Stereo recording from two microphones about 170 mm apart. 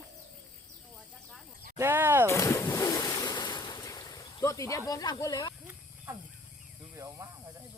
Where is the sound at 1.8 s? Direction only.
15° right (ahead or behind).